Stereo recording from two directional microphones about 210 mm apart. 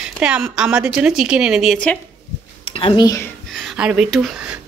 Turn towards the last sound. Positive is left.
turn(degrees=-5)  # may be behind; listen again after turning